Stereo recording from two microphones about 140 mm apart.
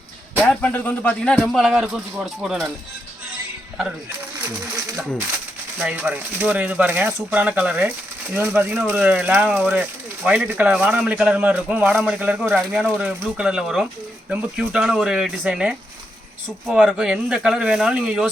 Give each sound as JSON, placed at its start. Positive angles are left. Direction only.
{"t": 0.4, "sound": "speech", "side_deg": 10}
{"t": 5.8, "sound": "speech", "side_deg": -10}